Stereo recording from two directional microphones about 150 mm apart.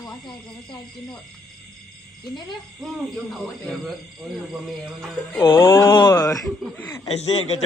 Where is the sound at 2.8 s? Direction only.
Centre (ahead or behind).